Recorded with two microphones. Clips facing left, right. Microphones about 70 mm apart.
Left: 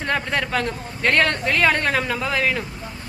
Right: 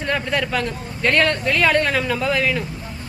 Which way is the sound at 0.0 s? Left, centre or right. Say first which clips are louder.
Right 1 dB; left.